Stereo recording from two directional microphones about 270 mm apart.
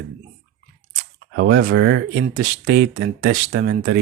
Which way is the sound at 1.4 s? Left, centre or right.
Right.